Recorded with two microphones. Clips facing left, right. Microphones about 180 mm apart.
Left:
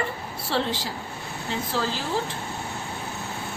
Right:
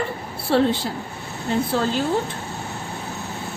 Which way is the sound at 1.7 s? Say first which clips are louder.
Right 3 dB; 60° right (ahead or behind).